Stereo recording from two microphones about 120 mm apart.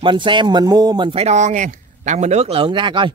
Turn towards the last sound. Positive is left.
turn(degrees=-45)  # may be behind; listen again after turning